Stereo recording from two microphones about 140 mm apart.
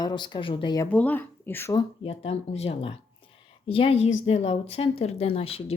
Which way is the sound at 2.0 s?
45° left (ahead or behind).